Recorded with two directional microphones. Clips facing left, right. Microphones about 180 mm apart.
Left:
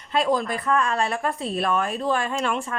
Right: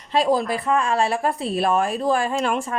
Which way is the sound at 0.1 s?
35° right (ahead or behind).